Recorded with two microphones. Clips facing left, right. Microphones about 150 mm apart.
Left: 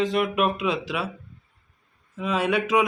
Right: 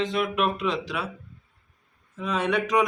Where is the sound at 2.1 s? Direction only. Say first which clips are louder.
Left 2 dB; 5° left (ahead or behind).